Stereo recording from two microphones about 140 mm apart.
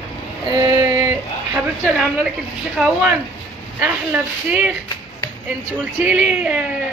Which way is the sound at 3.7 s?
10° right (ahead or behind).